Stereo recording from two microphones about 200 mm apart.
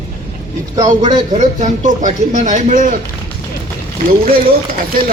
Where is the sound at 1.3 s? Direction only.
40° right (ahead or behind).